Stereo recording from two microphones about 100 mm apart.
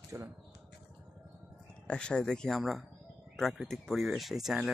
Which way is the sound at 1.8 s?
10° left (ahead or behind).